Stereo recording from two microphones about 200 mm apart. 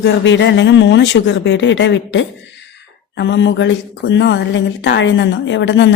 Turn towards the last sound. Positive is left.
turn(degrees=65)  # may be behind; listen again after turning